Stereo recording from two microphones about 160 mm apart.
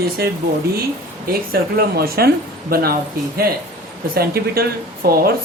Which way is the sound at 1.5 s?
70° right (ahead or behind).